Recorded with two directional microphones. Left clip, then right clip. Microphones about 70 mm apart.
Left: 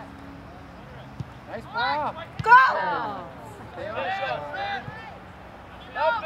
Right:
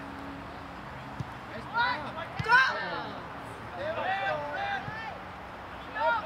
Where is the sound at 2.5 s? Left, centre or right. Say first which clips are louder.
Left 8 dB; left.